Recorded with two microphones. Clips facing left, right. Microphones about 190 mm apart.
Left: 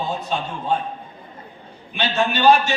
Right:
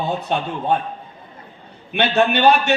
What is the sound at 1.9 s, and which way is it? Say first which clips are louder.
Speech: right 5 dB; 60° right (ahead or behind).